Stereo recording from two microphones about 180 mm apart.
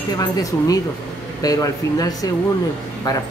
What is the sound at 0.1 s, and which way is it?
Speech, 20° left (ahead or behind).